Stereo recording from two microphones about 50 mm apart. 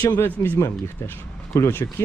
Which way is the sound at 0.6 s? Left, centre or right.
Left.